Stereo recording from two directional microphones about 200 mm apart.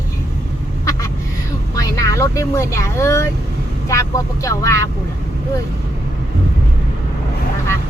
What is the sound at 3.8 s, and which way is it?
Speech, 15° left (ahead or behind).